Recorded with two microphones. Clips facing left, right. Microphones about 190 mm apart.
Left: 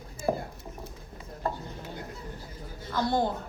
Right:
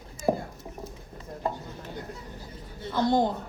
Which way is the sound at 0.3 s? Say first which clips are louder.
Right 3 dB; 15° right (ahead or behind).